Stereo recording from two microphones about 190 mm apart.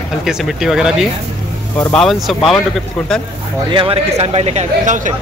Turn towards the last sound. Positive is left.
turn(degrees=-40)  # may be behind; listen again after turning